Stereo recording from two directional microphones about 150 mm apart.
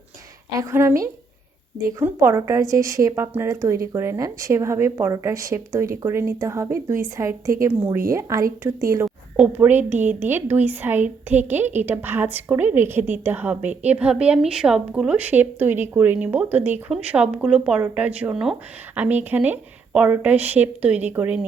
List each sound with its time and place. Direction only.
0.6 s a woman's voice: 15° right (ahead or behind)